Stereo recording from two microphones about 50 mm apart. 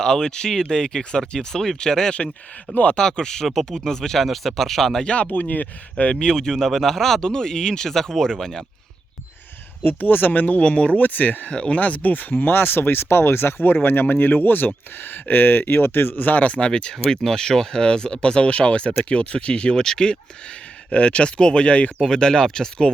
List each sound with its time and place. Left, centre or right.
0.0 s speech: centre
2.7 s speech: left
3.0 s speech: centre
5.0 s speech: left
6.1 s speech: centre
9.8 s speech: left; by 20.1 s centre
20.9 s speech: left
22.0 s speech: centre